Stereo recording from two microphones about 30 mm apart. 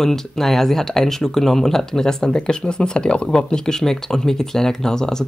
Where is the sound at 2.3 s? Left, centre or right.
Left.